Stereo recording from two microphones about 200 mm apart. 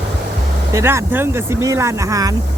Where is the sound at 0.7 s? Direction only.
15° right (ahead or behind).